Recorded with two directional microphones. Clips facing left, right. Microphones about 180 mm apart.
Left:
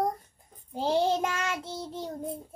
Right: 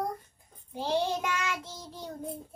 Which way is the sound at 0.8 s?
40° left (ahead or behind).